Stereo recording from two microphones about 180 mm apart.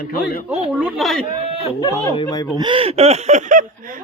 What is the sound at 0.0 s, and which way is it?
Speech, 55° left (ahead or behind).